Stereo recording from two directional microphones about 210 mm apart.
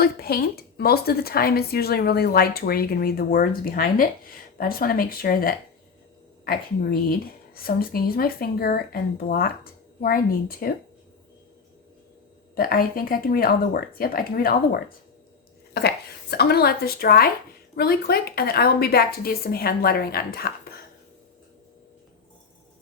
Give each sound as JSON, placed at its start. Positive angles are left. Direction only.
{"t": 0.0, "sound": "speech", "side_deg": 45}
{"t": 12.5, "sound": "speech", "side_deg": 45}